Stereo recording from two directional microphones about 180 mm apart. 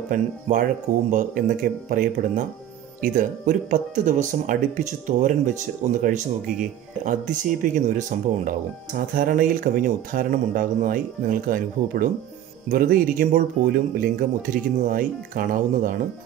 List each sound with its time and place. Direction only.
0.1 s speech: 50° right (ahead or behind)